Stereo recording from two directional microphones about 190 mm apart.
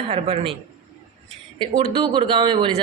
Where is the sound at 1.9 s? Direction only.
25° right (ahead or behind).